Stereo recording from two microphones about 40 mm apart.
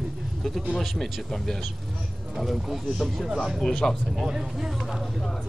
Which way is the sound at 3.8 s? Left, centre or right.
Centre.